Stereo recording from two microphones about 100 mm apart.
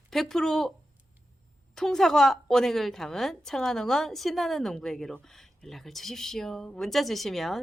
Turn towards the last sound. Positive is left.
turn(degrees=5)  # may be behind; listen again after turning